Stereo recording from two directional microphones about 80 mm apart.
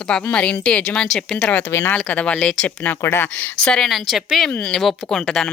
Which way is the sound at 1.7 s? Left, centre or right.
Left.